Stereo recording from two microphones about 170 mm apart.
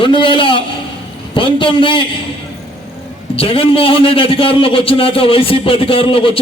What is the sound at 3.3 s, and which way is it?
A man's voice, 35° left (ahead or behind).